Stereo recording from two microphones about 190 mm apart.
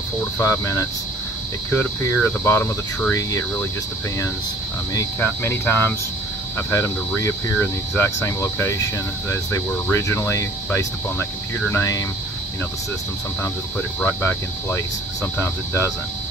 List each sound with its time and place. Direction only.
0.2 s speech: 15° left (ahead or behind)
4.9 s speech: 15° left (ahead or behind)
7.2 s speech: 15° left (ahead or behind)
13.4 s speech: 10° left (ahead or behind)